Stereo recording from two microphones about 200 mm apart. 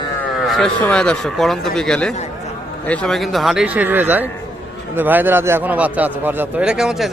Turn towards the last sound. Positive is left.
turn(degrees=0)  # may be behind; listen again after turning